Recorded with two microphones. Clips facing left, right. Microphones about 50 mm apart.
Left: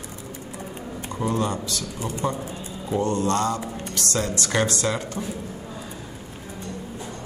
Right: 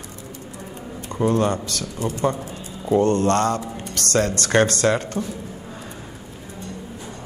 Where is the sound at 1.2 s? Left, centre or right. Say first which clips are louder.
Right 5 dB; right.